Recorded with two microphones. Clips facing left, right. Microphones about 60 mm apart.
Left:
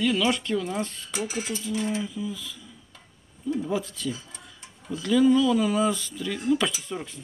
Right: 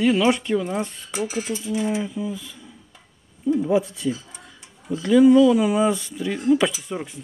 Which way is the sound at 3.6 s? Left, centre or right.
Centre.